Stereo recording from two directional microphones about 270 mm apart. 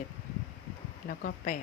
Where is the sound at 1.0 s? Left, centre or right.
Left.